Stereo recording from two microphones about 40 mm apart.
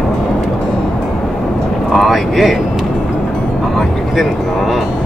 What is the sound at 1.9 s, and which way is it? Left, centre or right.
Vehicle, centre.